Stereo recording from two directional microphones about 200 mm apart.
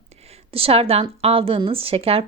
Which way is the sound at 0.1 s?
30° right (ahead or behind).